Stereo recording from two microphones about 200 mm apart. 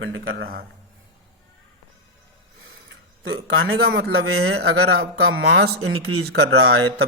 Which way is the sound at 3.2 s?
80° right.